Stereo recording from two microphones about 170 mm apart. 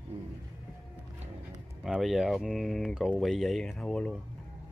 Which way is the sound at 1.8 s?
Centre (ahead or behind).